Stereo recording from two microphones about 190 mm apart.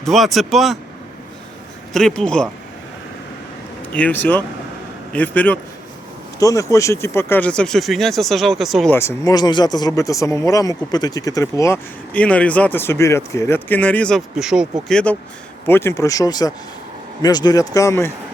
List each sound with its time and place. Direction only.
0.0 s speech: centre (ahead or behind)
1.9 s speech: 5° left (ahead or behind)
3.9 s speech: 10° left (ahead or behind)
9.0 s speech: 15° left (ahead or behind)